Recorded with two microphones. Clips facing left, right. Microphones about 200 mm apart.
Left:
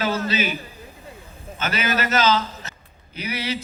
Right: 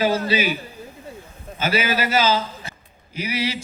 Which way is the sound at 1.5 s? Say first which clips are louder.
Right 3 dB; 10° right (ahead or behind).